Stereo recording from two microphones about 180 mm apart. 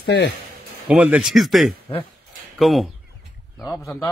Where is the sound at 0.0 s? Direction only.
60° left (ahead or behind).